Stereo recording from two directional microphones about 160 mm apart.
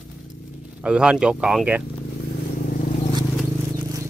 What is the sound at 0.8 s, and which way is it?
Speech, 5° right (ahead or behind).